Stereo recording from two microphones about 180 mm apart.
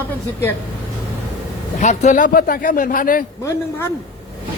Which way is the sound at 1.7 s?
40° left (ahead or behind).